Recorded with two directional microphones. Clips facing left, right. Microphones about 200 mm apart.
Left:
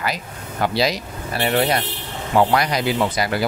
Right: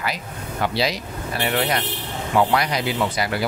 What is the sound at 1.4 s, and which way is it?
Speech, 30° left (ahead or behind).